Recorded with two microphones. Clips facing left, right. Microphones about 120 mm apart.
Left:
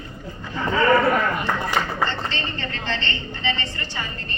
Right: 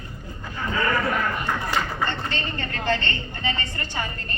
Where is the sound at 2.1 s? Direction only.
50° right (ahead or behind).